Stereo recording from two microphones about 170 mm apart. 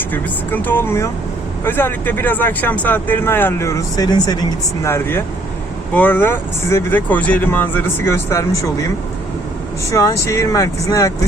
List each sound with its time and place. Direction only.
0.1 s speech: 10° left (ahead or behind)
9.9 s speech: 15° left (ahead or behind)